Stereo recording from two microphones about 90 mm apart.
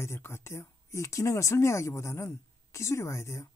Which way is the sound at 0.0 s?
30° left (ahead or behind).